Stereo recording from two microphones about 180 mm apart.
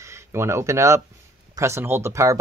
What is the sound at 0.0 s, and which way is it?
Speech, 15° right (ahead or behind).